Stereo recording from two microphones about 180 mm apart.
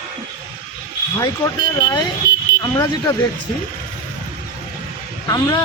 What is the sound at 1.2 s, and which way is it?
Speech, 20° left (ahead or behind).